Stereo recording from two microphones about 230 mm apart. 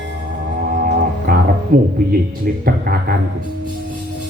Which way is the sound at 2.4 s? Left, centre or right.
Right.